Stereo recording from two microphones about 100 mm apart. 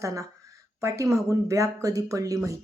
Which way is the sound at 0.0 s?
30° right (ahead or behind).